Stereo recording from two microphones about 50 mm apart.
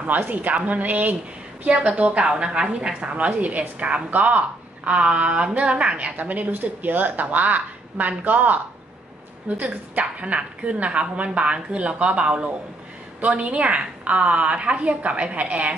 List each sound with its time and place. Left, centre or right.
0.0 s a woman's voice: right
9.6 s a woman's voice: right